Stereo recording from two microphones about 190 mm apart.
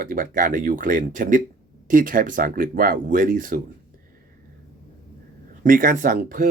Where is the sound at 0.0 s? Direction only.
50° right (ahead or behind).